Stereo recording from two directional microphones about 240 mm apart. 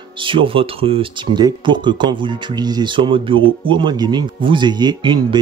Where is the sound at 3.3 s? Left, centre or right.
Right.